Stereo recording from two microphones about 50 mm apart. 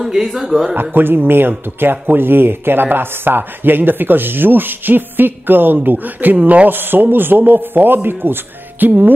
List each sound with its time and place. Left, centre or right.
0.0 s speech: centre
0.7 s speech: right
6.7 s speech: right